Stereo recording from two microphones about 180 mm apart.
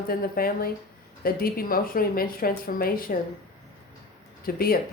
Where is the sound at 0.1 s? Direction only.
55° left (ahead or behind).